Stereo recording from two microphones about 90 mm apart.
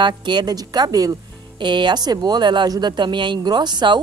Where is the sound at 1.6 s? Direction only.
60° right (ahead or behind).